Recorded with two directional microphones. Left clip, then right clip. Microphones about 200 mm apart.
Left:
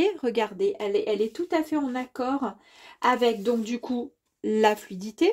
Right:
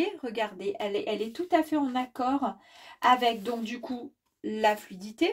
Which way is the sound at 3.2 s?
35° left (ahead or behind).